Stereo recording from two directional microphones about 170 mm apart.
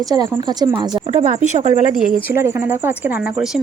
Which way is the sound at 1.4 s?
40° right (ahead or behind).